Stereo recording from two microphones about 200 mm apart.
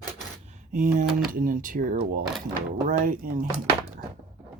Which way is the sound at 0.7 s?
45° right (ahead or behind).